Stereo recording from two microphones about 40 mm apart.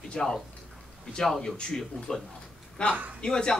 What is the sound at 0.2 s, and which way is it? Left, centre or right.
A man's voice, centre.